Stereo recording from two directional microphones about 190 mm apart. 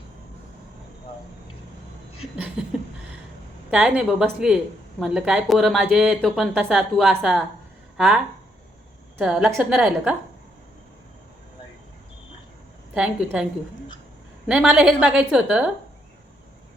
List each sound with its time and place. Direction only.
2.6 s a sound: 5° right (ahead or behind)
3.7 s a woman's voice: 5° right (ahead or behind)
12.9 s a woman's voice: 5° right (ahead or behind)